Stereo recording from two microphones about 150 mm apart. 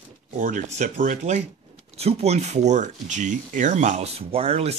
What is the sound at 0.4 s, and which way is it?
Speech, 55° right (ahead or behind).